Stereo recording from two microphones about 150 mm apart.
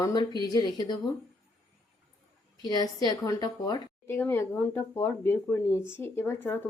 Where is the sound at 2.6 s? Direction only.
25° left (ahead or behind).